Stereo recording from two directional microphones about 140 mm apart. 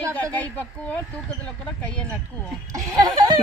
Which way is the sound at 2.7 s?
25° right (ahead or behind).